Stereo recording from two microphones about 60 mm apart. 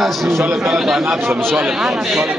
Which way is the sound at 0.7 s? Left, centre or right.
Centre.